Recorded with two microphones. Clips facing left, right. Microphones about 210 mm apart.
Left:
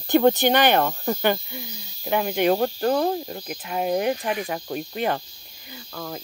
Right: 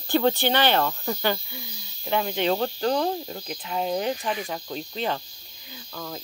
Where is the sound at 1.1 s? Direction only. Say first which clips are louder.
Left 4 dB; 50° left (ahead or behind).